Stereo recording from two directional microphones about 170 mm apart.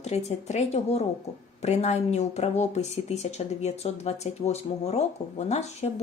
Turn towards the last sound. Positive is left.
turn(degrees=40)  # may be behind; listen again after turning